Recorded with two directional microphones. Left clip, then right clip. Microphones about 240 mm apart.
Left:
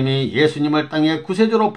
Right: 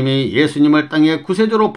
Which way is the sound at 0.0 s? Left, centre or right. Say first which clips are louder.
Right 2 dB; right.